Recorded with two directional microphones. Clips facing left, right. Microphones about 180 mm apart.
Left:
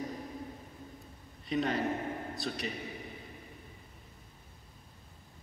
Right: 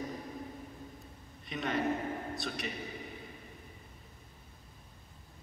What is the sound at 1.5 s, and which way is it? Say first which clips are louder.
A man's voice: left 2 dB; 35° left (ahead or behind).